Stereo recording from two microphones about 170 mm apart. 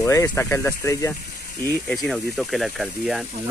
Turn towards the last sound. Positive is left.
turn(degrees=0)  # may be behind; listen again after turning